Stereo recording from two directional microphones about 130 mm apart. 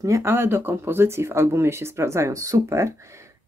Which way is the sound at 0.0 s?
20° right (ahead or behind).